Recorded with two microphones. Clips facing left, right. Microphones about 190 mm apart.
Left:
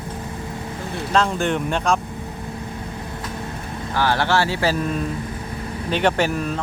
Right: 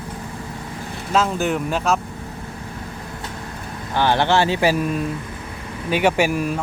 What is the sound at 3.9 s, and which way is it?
Speech, 20° right (ahead or behind).